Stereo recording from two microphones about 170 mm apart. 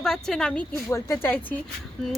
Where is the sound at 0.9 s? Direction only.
15° left (ahead or behind).